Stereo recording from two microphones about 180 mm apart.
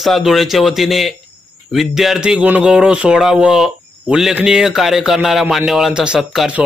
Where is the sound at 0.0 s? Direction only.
Centre (ahead or behind).